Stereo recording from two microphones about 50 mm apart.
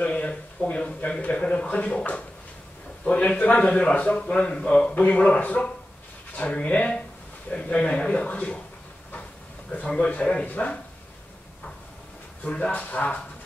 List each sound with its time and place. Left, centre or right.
0.0 s a sound: left
3.1 s speech: left
9.7 s speech: left
12.4 s speech: left